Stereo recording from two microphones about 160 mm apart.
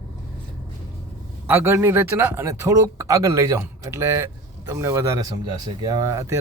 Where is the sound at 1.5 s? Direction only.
15° right (ahead or behind).